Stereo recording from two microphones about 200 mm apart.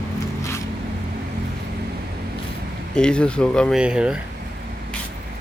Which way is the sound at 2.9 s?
5° left (ahead or behind).